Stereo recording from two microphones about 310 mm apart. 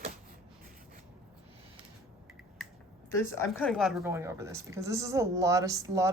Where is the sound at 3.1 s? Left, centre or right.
Centre.